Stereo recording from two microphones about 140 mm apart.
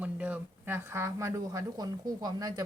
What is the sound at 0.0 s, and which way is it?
Speech, 10° right (ahead or behind).